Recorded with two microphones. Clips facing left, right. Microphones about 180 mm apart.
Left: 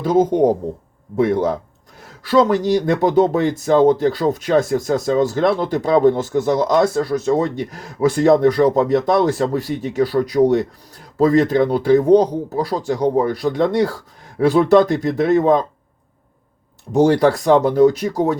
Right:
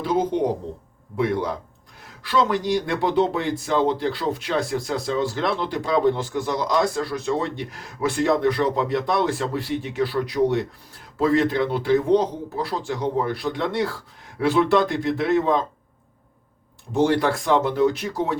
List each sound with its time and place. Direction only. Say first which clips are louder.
0.0 s speech: left 7 dB; 45° left (ahead or behind)
16.9 s speech: left 6 dB; 40° left (ahead or behind)